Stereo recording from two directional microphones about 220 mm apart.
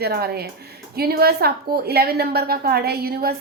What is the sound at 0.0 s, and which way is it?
A woman's voice, 45° right (ahead or behind).